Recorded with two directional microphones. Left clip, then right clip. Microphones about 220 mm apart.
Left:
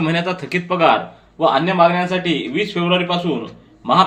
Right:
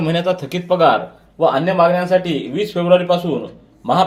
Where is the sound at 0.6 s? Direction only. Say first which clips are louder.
Right 2 dB; 40° right (ahead or behind).